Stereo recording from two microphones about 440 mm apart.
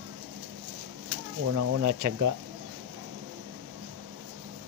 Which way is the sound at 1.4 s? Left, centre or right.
Right.